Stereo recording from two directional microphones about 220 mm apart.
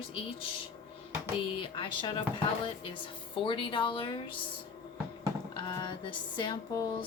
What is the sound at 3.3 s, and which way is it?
Speech, 20° left (ahead or behind).